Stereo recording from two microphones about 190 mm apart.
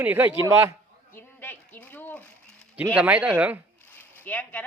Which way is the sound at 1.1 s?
10° left (ahead or behind).